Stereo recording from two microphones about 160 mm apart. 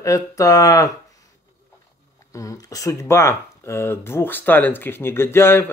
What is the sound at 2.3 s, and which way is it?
Speech, 20° left (ahead or behind).